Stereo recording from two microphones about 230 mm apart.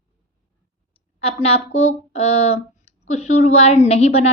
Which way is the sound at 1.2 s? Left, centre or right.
Left.